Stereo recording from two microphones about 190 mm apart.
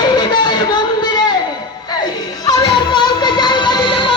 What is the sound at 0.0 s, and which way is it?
Music, 20° left (ahead or behind).